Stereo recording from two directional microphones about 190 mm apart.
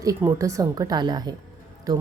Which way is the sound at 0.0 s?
15° right (ahead or behind).